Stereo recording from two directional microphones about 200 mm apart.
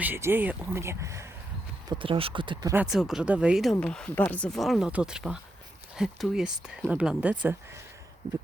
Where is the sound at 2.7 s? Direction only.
5° right (ahead or behind).